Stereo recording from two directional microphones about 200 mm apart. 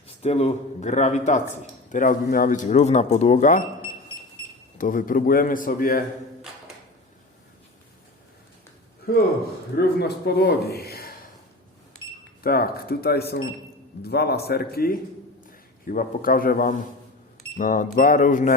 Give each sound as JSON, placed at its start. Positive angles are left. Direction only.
{"t": 0.2, "sound": "speech", "side_deg": 30}
{"t": 4.8, "sound": "speech", "side_deg": 40}
{"t": 9.7, "sound": "speech", "side_deg": 50}
{"t": 12.4, "sound": "speech", "side_deg": 50}